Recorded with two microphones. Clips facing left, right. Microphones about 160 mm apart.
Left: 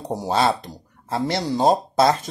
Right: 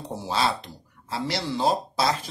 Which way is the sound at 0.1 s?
45° left (ahead or behind).